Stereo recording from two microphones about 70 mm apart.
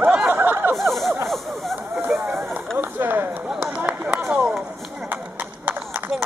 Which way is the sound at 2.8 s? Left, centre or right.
Right.